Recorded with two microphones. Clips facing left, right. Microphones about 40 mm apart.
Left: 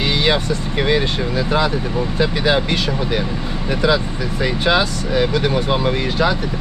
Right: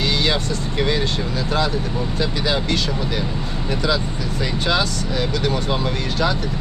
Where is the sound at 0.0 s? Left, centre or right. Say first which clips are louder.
Left 3 dB; left.